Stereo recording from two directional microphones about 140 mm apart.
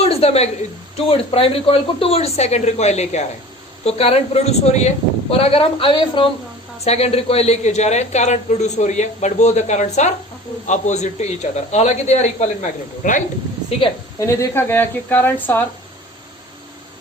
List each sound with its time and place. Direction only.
0.0 s a sound: 45° left (ahead or behind)
1.0 s speech: 40° left (ahead or behind)
6.8 s speech: 50° left (ahead or behind); by 13.2 s 65° left (ahead or behind)
13.7 s a woman's voice: 40° left (ahead or behind)
14.2 s speech: 20° left (ahead or behind)